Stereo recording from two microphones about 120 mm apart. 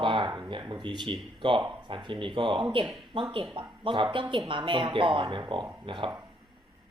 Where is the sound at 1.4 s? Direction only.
45° right (ahead or behind).